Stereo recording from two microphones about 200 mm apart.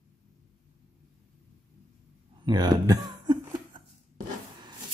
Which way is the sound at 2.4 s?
20° right (ahead or behind).